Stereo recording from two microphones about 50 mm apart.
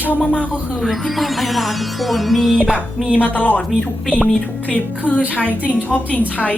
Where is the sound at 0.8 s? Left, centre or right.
Centre.